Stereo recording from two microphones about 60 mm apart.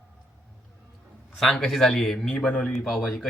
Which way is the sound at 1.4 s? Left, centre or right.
Centre.